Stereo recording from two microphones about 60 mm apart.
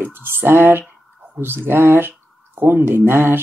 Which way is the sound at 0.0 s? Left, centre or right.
Right.